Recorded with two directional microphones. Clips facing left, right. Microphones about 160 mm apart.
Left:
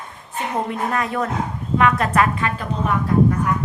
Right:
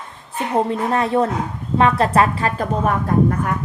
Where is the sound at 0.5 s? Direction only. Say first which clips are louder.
Right 5 dB; 30° right (ahead or behind).